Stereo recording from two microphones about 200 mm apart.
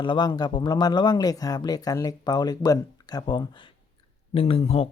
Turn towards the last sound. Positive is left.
turn(degrees=30)  # may be behind; listen again after turning